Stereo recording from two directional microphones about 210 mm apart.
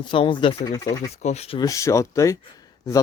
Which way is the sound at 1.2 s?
30° left (ahead or behind).